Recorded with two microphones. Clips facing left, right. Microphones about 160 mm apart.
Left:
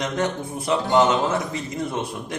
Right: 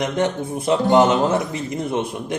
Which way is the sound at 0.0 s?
20° right (ahead or behind).